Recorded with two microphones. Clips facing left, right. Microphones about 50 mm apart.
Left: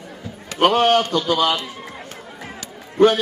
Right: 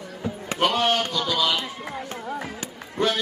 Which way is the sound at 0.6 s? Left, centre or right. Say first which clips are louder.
Left 7 dB; left.